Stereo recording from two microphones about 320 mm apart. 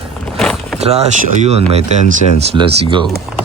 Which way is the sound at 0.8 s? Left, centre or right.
Centre.